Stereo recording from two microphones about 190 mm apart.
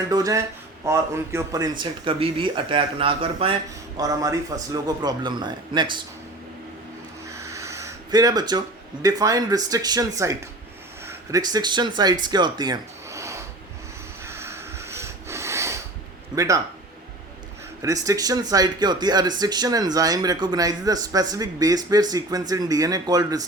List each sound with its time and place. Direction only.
0.1 s a man's voice: 20° right (ahead or behind)
1.8 s speech: 30° right (ahead or behind)
7.3 s speech: 15° right (ahead or behind)
14.3 s a sound: 15° right (ahead or behind)
16.3 s a man's voice: 15° right (ahead or behind)
17.8 s speech: 15° right (ahead or behind)